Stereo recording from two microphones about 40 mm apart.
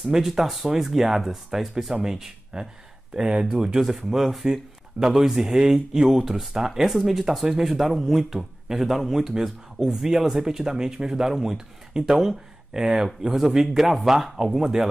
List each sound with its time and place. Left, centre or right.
0.0 s a man's voice: centre